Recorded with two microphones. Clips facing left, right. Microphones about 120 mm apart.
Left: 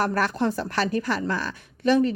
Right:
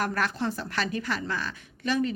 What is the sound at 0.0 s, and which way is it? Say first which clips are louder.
A woman's voice: left 5 dB; 35° left (ahead or behind).